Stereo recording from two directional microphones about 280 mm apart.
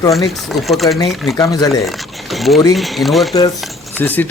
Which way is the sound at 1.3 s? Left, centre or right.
Centre.